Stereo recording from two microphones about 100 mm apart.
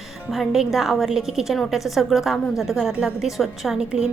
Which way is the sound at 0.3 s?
5° right (ahead or behind).